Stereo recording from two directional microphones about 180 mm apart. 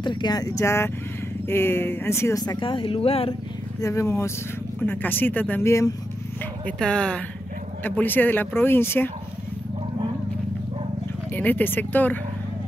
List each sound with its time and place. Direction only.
0.0 s speech: 25° left (ahead or behind)
3.8 s speech: 15° left (ahead or behind)
6.6 s speech: 5° left (ahead or behind)
11.3 s speech: 10° left (ahead or behind)